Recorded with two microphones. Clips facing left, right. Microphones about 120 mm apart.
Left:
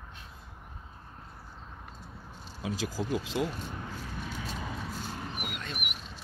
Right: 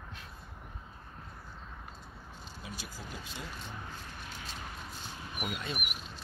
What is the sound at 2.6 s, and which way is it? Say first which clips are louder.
Speech: left 13 dB; 90° left.